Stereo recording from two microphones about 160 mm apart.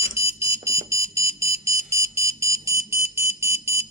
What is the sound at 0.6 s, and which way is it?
Buzzer, 15° right (ahead or behind).